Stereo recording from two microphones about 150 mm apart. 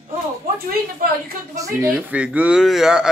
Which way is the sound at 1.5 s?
20° right (ahead or behind).